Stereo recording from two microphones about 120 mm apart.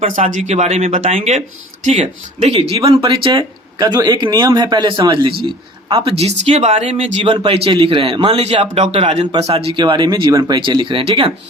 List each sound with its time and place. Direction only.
0.2 s speech: 80° right; by 2.6 s 65° right (ahead or behind)
2.6 s speech: 55° right (ahead or behind)
2.8 s a man's voice: 35° right (ahead or behind)
3.1 s a man's voice: 45° right (ahead or behind)
9.7 s a man's voice: 40° right (ahead or behind)
10.3 s speech: 25° right (ahead or behind)
10.6 s a man's voice: 45° right (ahead or behind)